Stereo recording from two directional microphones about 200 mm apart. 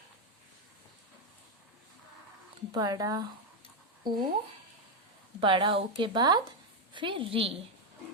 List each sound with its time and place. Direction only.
2.7 s speech: 20° right (ahead or behind)
5.4 s speech: 25° right (ahead or behind)